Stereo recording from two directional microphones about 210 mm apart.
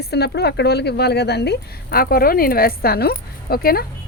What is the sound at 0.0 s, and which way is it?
A woman's voice, 50° left (ahead or behind).